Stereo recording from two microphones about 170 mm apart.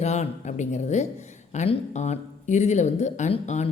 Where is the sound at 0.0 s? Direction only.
40° left (ahead or behind).